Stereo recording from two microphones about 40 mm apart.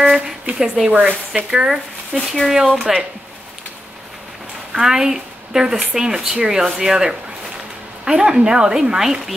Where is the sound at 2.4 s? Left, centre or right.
Centre.